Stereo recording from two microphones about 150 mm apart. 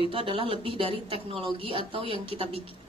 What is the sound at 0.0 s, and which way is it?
A woman's voice, 35° right (ahead or behind).